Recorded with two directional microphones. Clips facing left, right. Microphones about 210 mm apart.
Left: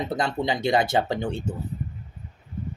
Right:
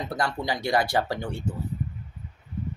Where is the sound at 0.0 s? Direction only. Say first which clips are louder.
Left 3 dB; 25° left (ahead or behind).